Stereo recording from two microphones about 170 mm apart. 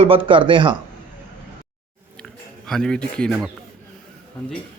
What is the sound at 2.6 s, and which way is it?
Speech, 5° left (ahead or behind).